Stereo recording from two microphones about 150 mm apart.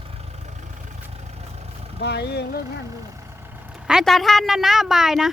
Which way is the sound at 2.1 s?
90° left.